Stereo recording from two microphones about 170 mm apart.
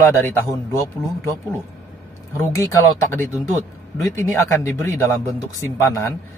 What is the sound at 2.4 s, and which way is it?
A man's voice, 15° left (ahead or behind).